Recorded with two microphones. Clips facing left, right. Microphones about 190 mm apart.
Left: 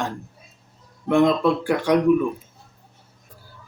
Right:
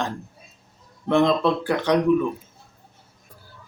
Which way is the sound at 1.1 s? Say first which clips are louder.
Left 2 dB; 10° left (ahead or behind).